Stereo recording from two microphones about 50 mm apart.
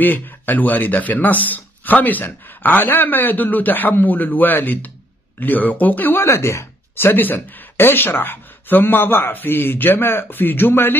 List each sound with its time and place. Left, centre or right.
0.0 s speech: left
6.2 s speech: left
7.1 s speech: left